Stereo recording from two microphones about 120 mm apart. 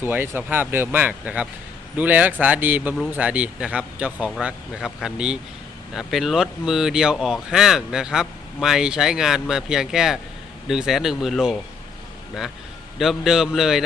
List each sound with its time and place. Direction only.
0.0 s speech: 15° right (ahead or behind)
13.0 s speech: 5° right (ahead or behind)